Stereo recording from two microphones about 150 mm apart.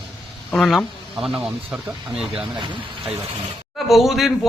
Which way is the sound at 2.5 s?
30° right (ahead or behind).